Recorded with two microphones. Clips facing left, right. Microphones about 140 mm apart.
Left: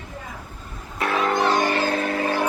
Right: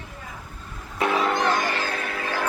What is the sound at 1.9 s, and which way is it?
Vehicle, 40° left (ahead or behind).